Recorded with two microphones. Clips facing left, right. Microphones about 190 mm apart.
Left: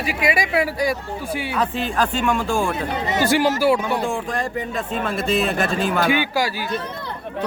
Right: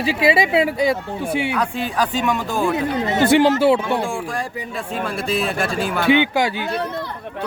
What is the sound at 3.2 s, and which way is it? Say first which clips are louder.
Speech: right 4 dB; 20° right (ahead or behind).